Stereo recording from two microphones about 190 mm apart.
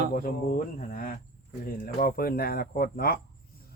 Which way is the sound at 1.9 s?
50° left (ahead or behind).